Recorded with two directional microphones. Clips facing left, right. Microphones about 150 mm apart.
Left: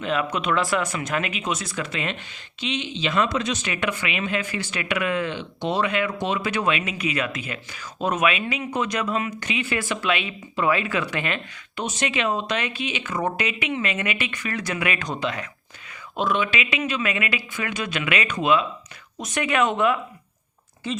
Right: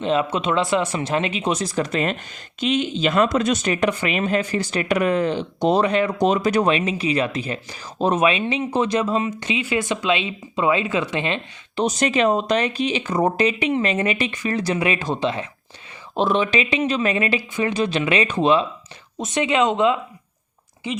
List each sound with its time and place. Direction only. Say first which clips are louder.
0.0 s speech: right 4 dB; 30° right (ahead or behind)
11.8 s speech: right 7 dB; 40° right (ahead or behind); by 21.0 s 15° right (ahead or behind)